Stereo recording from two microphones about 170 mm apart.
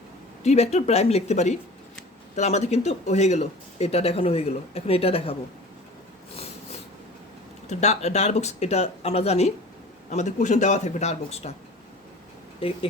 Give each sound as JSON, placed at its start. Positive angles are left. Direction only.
{"t": 0.4, "sound": "speech", "side_deg": 40}
{"t": 6.3, "sound": "a sound", "side_deg": 35}
{"t": 7.7, "sound": "a man's voice", "side_deg": 40}
{"t": 12.5, "sound": "speech", "side_deg": 35}